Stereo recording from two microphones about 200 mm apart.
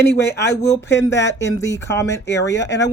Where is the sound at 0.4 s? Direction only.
15° left (ahead or behind).